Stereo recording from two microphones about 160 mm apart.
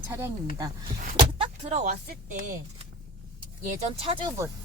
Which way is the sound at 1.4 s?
40° right (ahead or behind).